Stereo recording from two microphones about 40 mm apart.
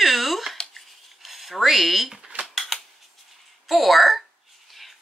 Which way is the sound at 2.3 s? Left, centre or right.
Right.